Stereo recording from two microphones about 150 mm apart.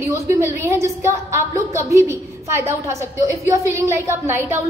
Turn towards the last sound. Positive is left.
turn(degrees=-15)  # may be behind; listen again after turning